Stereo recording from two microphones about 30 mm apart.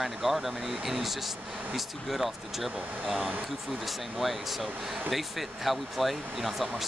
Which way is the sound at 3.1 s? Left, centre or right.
Right.